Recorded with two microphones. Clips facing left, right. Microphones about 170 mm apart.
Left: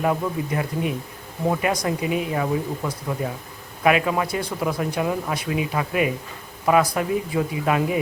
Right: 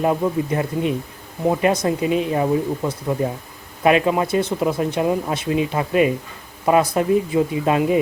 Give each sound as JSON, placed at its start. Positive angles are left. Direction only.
{"t": 0.0, "sound": "speech", "side_deg": -25}